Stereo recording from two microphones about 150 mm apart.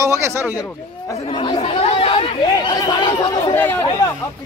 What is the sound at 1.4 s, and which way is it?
Chatter, 35° left (ahead or behind).